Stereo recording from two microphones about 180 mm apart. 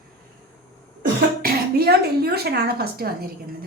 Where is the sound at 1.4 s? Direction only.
60° right (ahead or behind).